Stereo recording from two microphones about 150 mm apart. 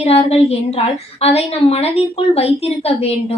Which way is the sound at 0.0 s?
45° left (ahead or behind).